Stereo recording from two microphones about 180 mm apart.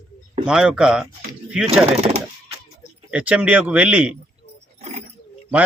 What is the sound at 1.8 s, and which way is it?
Speech, 35° right (ahead or behind).